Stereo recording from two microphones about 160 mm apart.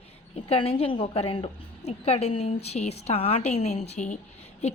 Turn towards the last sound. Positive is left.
turn(degrees=45)  # may be behind; listen again after turning